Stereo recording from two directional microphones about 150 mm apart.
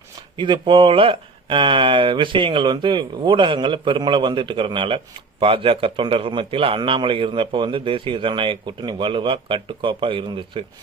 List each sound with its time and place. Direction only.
0.3 s a man's voice: 30° right (ahead or behind)